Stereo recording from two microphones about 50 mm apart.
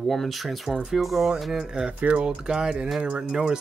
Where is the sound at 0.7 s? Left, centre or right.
Centre.